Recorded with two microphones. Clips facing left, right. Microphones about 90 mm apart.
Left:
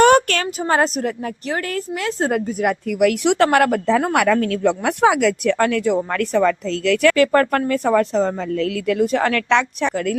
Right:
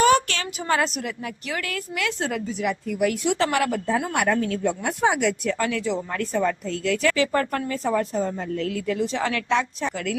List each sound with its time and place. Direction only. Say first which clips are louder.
0.0 s a sound: left 6 dB; 50° left (ahead or behind)
0.4 s speech: left 5 dB; 35° left (ahead or behind)
2.8 s speech: left 7 dB; 80° left; by 3.8 s 55° left (ahead or behind)
3.8 s a woman's voice: left 6 dB; 80° left; by 6.0 s 55° left (ahead or behind)
6.1 s a woman's voice: left 6 dB; 75° left (ahead or behind)
9.0 s speech: left 9 dB; 55° left (ahead or behind)
9.5 s a woman's voice: left 5 dB; 80° left
9.9 s speech: left 7 dB; 45° left (ahead or behind)